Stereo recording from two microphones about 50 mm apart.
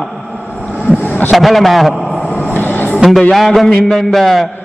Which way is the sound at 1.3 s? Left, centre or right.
Centre.